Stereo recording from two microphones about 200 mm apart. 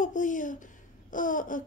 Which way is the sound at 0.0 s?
40° left (ahead or behind).